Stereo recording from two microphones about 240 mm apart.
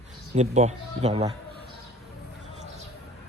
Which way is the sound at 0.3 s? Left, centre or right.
Right.